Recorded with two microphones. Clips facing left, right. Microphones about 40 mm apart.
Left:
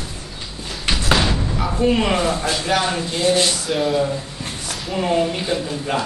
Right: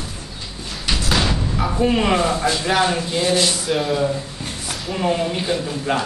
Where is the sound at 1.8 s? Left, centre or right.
Centre.